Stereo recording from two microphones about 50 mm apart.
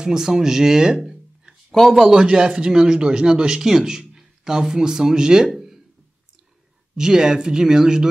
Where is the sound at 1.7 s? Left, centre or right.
Centre.